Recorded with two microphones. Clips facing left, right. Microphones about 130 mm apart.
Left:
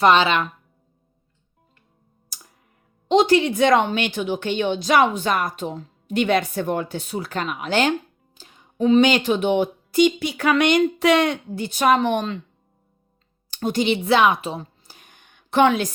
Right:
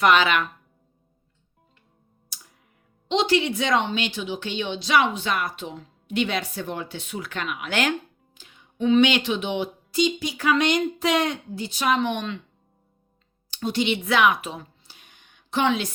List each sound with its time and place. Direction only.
0.0 s a woman's voice: 30° left (ahead or behind)
2.3 s music: 45° left (ahead or behind)
3.1 s a woman's voice: 45° left (ahead or behind)
13.5 s speech: 50° left (ahead or behind); by 14.7 s 30° left (ahead or behind)
14.8 s a sound: 45° left (ahead or behind)